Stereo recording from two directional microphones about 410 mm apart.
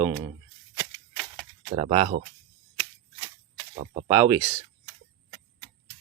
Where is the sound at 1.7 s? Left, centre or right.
Centre.